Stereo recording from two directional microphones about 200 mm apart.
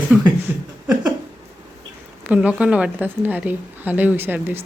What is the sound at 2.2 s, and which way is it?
Speech, 5° right (ahead or behind).